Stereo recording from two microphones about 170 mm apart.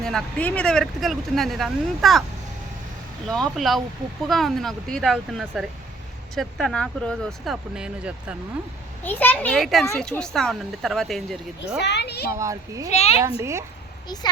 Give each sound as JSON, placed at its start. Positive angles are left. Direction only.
{"t": 0.0, "sound": "speech", "side_deg": 5}
{"t": 3.5, "sound": "speech", "side_deg": 0}
{"t": 9.0, "sound": "a child's voice", "side_deg": 10}
{"t": 9.6, "sound": "speech", "side_deg": 0}
{"t": 11.8, "sound": "a child's voice", "side_deg": 85}
{"t": 12.3, "sound": "a child's voice", "side_deg": -20}
{"t": 12.9, "sound": "speech", "side_deg": 40}
{"t": 13.4, "sound": "speech", "side_deg": -15}